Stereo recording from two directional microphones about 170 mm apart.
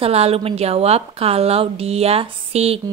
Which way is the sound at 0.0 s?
35° right (ahead or behind).